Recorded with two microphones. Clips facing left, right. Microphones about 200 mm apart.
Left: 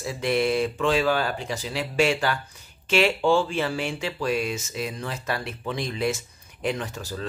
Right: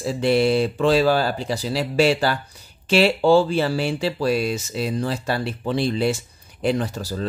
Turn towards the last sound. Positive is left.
turn(degrees=-35)  # may be behind; listen again after turning